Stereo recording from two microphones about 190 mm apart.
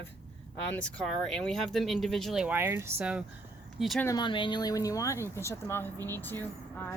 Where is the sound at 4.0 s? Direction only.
20° left (ahead or behind).